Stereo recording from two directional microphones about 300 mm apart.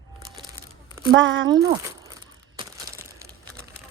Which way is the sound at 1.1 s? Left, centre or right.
Right.